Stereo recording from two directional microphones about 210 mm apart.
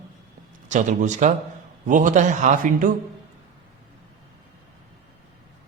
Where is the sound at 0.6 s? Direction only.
35° right (ahead or behind).